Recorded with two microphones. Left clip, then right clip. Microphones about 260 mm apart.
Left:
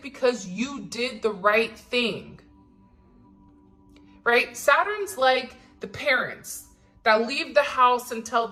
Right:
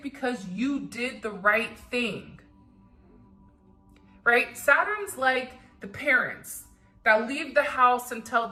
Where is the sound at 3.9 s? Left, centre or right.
Centre.